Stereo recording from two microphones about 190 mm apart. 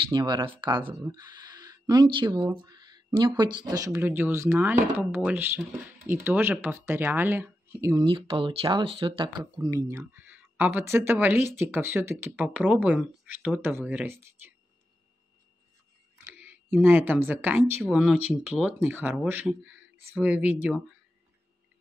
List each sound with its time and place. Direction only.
0.1 s speech: 20° right (ahead or behind)
8.0 s speech: 25° right (ahead or behind)
16.3 s speech: 10° right (ahead or behind)